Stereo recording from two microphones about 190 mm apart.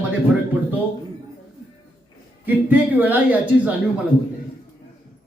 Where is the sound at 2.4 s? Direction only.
10° right (ahead or behind).